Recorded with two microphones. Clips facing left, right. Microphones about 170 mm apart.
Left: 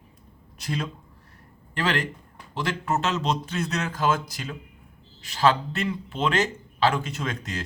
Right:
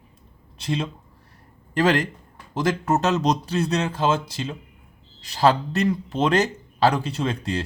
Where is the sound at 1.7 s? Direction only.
40° right (ahead or behind).